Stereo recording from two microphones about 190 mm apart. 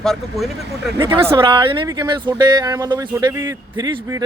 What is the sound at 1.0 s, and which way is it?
Speech, 25° right (ahead or behind).